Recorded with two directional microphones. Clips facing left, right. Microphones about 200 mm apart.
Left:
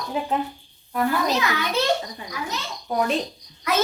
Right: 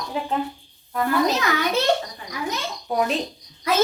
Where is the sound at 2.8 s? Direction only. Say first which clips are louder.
Even; 5° right (ahead or behind).